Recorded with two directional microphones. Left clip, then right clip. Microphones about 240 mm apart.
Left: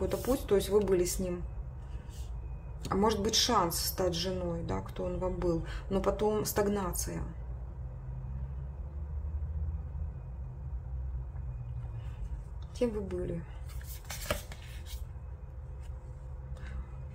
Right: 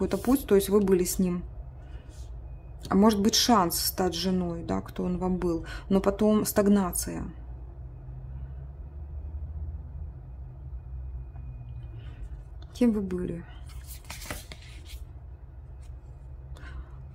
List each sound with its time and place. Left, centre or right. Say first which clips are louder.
0.0 s a woman's voice: right 5 dB; right
2.9 s a woman's voice: right 5 dB; right
12.7 s a woman's voice: right 5 dB; right